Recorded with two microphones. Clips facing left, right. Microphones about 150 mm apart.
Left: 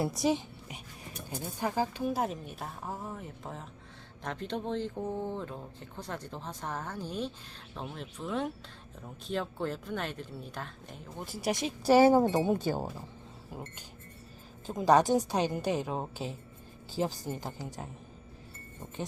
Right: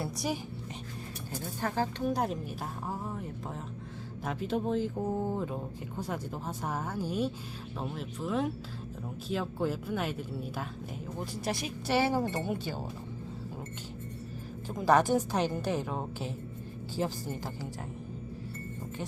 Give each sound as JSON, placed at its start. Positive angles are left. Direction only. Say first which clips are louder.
{"t": 1.3, "sound": "speech", "louder": "left 1 dB", "side_deg": 15}
{"t": 11.3, "sound": "a woman's voice", "louder": "left 3 dB", "side_deg": 10}
{"t": 11.9, "sound": "speech", "louder": "left 7 dB", "side_deg": 45}
{"t": 12.2, "sound": "speech", "louder": "left 6 dB", "side_deg": 90}
{"t": 12.5, "sound": "speech", "louder": "left 5 dB", "side_deg": 45}
{"t": 14.7, "sound": "a woman's voice", "louder": "left 1 dB", "side_deg": 20}